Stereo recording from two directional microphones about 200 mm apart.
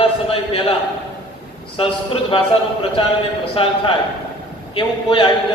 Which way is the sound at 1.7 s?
25° left (ahead or behind).